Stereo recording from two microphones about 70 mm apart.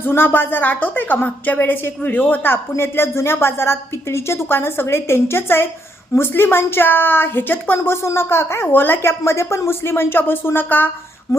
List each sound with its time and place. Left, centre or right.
0.0 s a woman's voice: left
11.3 s speech: left